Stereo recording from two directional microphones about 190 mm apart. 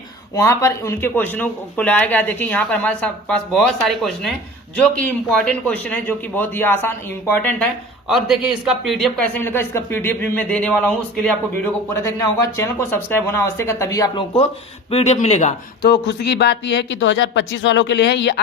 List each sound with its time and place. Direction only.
0.3 s speech: 15° left (ahead or behind)
8.0 s speech: 5° right (ahead or behind); by 14.3 s 20° left (ahead or behind)
14.8 s speech: 30° left (ahead or behind)
15.8 s speech: 60° left (ahead or behind)